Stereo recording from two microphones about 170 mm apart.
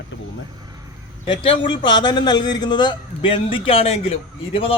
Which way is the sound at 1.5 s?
30° left (ahead or behind).